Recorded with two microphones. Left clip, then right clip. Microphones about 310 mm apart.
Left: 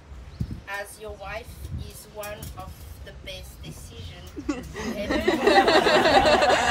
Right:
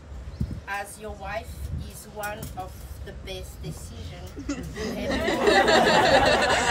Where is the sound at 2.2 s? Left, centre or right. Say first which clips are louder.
Right 3 dB; right.